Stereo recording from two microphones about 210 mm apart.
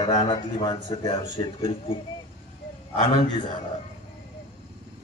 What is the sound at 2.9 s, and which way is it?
Speech, 20° left (ahead or behind).